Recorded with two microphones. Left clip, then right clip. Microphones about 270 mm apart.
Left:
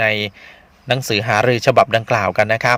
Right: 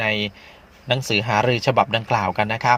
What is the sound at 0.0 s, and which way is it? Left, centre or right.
A man's voice, left.